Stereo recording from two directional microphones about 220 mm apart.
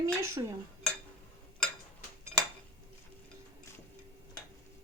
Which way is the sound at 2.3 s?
Centre (ahead or behind).